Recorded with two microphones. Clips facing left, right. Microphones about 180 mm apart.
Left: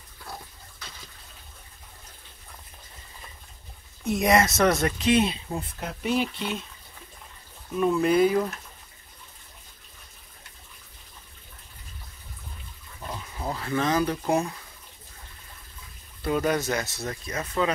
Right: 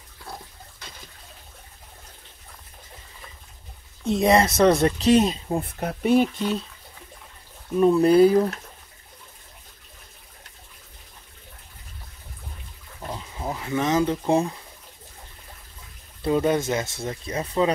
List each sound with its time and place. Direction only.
4.0 s speech: 30° right (ahead or behind)
7.8 s speech: 35° right (ahead or behind)
13.0 s a sound: 25° right (ahead or behind)
16.2 s speech: 25° right (ahead or behind)